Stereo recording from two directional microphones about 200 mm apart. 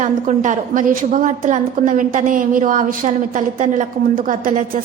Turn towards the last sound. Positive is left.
turn(degrees=-40)  # may be behind; listen again after turning